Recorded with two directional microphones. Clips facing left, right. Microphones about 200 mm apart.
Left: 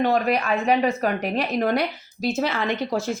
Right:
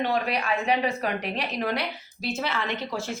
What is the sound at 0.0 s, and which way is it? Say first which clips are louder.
A woman's voice: left 5 dB; 45° left (ahead or behind).